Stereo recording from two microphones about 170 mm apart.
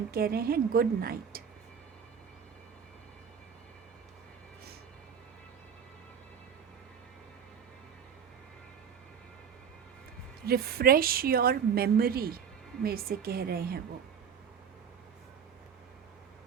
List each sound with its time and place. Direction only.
0.1 s a woman's voice: 60° right (ahead or behind)
10.4 s a woman's voice: 65° right (ahead or behind)